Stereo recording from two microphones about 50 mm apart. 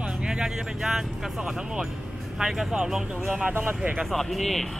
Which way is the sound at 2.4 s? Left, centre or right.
Centre.